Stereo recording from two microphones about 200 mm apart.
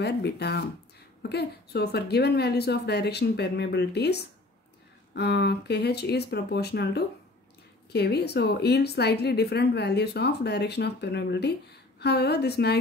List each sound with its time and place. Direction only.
0.0 s a woman's voice: 55° left (ahead or behind)